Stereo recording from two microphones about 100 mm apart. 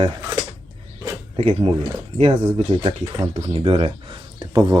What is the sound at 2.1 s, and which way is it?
Speech, 90° right.